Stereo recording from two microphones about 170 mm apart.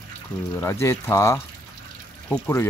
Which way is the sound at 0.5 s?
15° left (ahead or behind).